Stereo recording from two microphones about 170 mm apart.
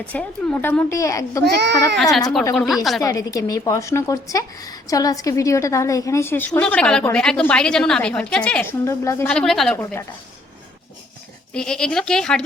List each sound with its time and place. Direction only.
0.0 s a woman's voice: 5° left (ahead or behind)
1.5 s a child's voice: 85° right
2.6 s speech: centre (ahead or behind)
3.0 s a woman's voice: 20° left (ahead or behind)
9.3 s speech: 5° left (ahead or behind)
11.5 s speech: 5° left (ahead or behind)